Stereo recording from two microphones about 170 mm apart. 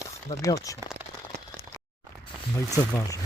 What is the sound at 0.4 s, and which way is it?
Speech, 20° left (ahead or behind).